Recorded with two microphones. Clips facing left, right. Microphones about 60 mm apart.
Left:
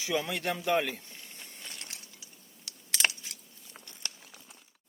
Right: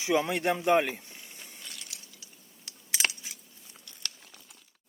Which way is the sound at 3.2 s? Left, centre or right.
Centre.